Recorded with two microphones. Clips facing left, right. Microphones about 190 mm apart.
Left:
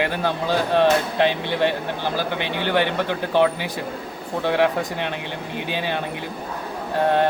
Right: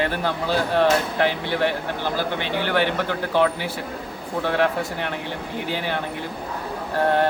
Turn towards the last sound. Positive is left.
turn(degrees=20)  # may be behind; listen again after turning